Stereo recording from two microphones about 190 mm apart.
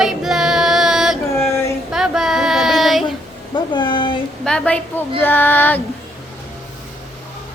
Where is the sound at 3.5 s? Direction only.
25° left (ahead or behind).